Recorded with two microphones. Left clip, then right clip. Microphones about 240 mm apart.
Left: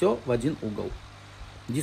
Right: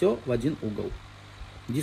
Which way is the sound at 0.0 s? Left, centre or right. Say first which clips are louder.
Left 1 dB; centre.